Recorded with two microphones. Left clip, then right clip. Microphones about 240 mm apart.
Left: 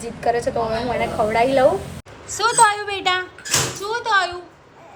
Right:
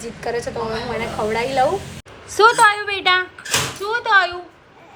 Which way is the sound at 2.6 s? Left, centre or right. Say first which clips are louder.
Right 1 dB; centre.